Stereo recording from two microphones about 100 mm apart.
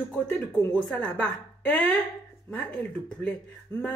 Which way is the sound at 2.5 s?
15° left (ahead or behind).